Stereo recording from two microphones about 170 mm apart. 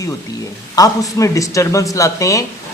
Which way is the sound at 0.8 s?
20° left (ahead or behind).